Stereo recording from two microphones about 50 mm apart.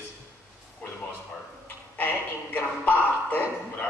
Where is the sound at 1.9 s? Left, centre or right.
Left.